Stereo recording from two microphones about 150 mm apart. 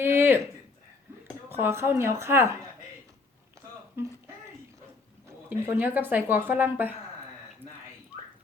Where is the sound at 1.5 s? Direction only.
15° right (ahead or behind).